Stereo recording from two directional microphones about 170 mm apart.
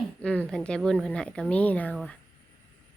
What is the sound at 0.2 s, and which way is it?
Speech, 10° left (ahead or behind).